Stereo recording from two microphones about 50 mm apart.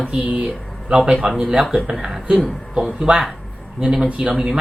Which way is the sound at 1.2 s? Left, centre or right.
Centre.